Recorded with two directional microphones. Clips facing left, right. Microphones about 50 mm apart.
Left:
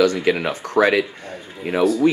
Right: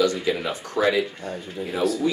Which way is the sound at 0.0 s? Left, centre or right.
Left.